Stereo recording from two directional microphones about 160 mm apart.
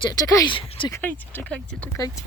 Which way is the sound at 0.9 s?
15° left (ahead or behind).